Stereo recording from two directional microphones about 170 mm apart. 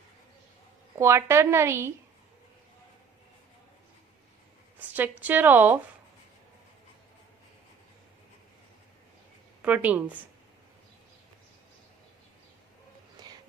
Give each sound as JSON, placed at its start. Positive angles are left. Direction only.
{"t": 0.9, "sound": "a woman's voice", "side_deg": -15}
{"t": 4.8, "sound": "a woman's voice", "side_deg": -10}
{"t": 9.6, "sound": "a woman's voice", "side_deg": -10}